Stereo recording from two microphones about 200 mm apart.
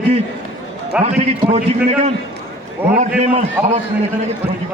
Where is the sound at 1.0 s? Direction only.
30° right (ahead or behind).